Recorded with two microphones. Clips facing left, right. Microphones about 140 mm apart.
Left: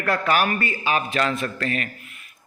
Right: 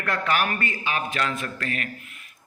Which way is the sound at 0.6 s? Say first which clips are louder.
Left 4 dB; 25° left (ahead or behind).